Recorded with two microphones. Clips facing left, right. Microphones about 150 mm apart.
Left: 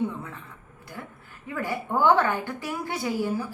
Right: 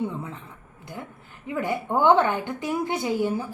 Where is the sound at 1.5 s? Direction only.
20° right (ahead or behind).